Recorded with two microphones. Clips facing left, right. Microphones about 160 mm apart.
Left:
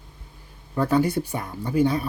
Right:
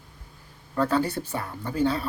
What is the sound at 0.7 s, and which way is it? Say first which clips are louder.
Speech: left 3 dB; 15° left (ahead or behind).